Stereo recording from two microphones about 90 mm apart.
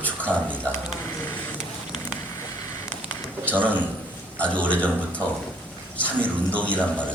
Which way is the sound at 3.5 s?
20° right (ahead or behind).